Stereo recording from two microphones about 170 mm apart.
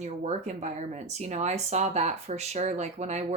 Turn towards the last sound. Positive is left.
turn(degrees=-40)  # may be behind; listen again after turning